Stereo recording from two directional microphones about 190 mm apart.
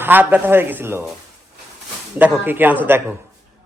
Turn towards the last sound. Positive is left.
turn(degrees=-10)  # may be behind; listen again after turning